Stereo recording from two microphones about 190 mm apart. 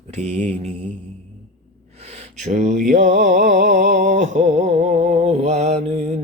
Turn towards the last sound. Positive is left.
turn(degrees=-35)  # may be behind; listen again after turning